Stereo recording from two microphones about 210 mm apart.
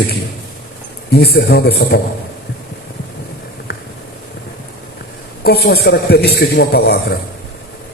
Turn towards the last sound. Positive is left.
turn(degrees=50)  # may be behind; listen again after turning